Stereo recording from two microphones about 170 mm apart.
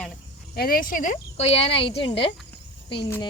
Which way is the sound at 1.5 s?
35° left (ahead or behind).